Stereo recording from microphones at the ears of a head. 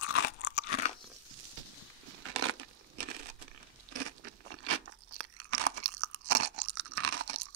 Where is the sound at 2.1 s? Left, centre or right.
Right.